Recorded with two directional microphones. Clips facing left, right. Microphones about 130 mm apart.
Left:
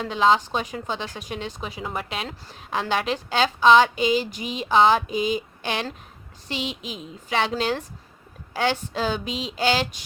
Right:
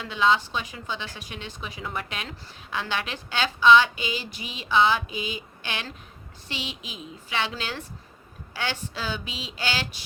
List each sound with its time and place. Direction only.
0.0 s speech: 40° left (ahead or behind)